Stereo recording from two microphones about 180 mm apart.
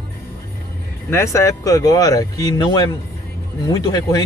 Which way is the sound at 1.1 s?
15° left (ahead or behind).